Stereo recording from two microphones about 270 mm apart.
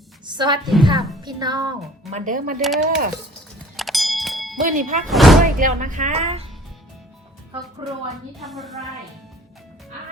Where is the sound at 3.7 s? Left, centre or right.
Centre.